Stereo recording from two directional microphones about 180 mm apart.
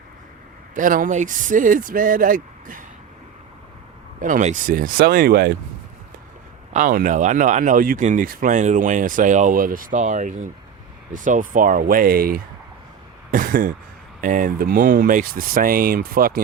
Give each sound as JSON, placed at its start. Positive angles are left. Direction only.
{"t": 0.7, "sound": "speech", "side_deg": -50}
{"t": 4.2, "sound": "speech", "side_deg": -45}
{"t": 6.7, "sound": "speech", "side_deg": -50}